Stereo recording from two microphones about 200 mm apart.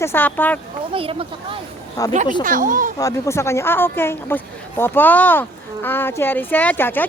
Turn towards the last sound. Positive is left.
turn(degrees=10)  # may be behind; listen again after turning